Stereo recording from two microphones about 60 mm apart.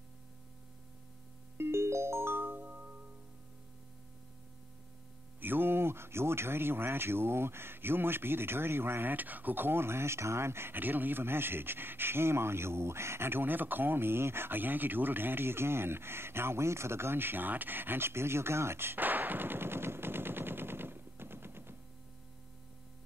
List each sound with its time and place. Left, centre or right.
1.6 s music: right
5.4 s speech: right